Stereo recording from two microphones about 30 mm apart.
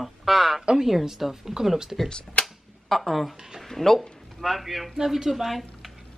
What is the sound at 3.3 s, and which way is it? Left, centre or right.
Speech, centre.